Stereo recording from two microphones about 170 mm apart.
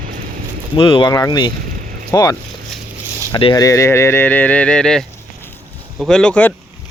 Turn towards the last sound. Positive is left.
turn(degrees=10)  # may be behind; listen again after turning